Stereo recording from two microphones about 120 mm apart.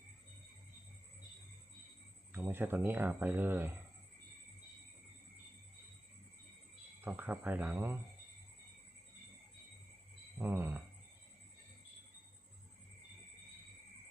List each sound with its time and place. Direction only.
2.3 s speech: 20° right (ahead or behind)
7.0 s speech: 15° right (ahead or behind)
10.3 s speech: 20° right (ahead or behind)